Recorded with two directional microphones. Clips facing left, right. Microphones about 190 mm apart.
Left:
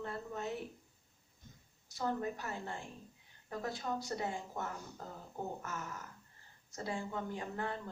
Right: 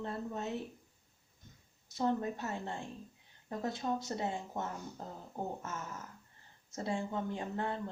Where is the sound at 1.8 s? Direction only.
25° right (ahead or behind).